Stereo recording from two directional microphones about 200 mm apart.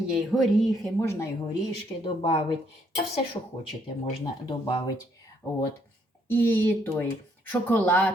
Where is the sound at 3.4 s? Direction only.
25° left (ahead or behind).